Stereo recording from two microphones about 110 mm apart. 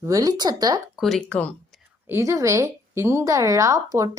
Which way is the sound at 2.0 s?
25° right (ahead or behind).